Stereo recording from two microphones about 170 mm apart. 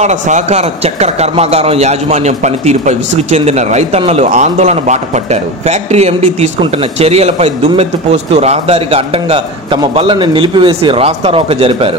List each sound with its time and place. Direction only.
0.0 s a man's voice: 40° right (ahead or behind)